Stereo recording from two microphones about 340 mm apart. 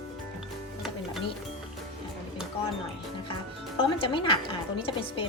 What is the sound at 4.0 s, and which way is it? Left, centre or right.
A woman's voice, centre.